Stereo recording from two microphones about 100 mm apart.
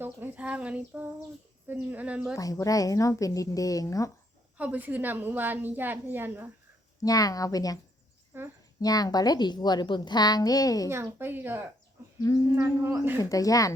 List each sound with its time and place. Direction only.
0.0 s speech: 15° right (ahead or behind)
2.3 s a woman's voice: 35° left (ahead or behind)
4.5 s a woman's voice: 15° right (ahead or behind)
7.0 s a woman's voice: 35° left (ahead or behind)
8.3 s a woman's voice: 25° right (ahead or behind)
8.8 s a woman's voice: 40° left (ahead or behind)
10.8 s a woman's voice: 25° right (ahead or behind)
13.3 s a woman's voice: 35° left (ahead or behind)